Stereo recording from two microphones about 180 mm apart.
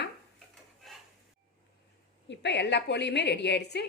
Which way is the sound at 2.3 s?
75° left (ahead or behind).